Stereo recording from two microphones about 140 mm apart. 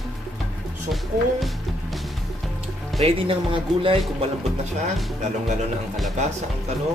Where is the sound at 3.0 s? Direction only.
40° right (ahead or behind).